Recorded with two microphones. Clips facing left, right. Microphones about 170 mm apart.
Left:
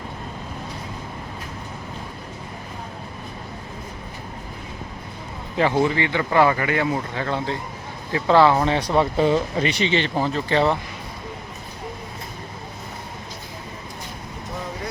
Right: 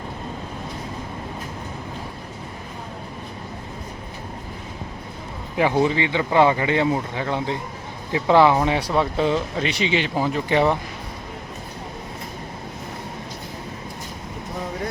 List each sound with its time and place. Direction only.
5.5 s speech: 15° right (ahead or behind)